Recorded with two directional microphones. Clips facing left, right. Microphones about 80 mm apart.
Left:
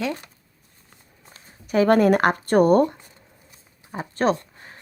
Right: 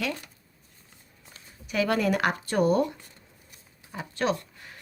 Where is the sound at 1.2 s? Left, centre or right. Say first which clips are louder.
Left 2 dB; left.